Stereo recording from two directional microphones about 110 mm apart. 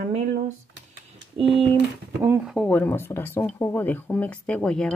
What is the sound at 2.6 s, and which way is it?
Speech, 15° left (ahead or behind).